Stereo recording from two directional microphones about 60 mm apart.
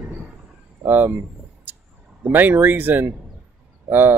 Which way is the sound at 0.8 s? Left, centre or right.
Right.